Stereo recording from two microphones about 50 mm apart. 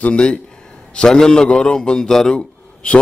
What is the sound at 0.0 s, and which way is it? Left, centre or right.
A man's voice, left.